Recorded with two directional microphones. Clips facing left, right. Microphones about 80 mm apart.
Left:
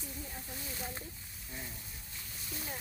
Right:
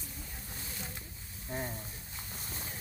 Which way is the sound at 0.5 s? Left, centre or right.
Left.